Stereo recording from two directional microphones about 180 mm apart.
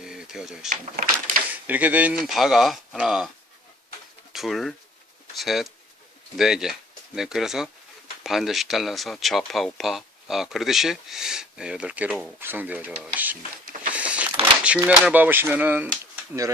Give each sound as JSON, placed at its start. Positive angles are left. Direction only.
{"t": 0.0, "sound": "a sound", "side_deg": -5}
{"t": 0.7, "sound": "speech", "side_deg": -50}
{"t": 1.6, "sound": "speech", "side_deg": -10}
{"t": 4.3, "sound": "speech", "side_deg": 0}
{"t": 13.9, "sound": "a sound", "side_deg": -5}
{"t": 14.8, "sound": "speech", "side_deg": -10}